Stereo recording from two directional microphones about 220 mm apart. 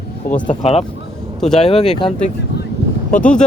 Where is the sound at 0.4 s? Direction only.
25° left (ahead or behind).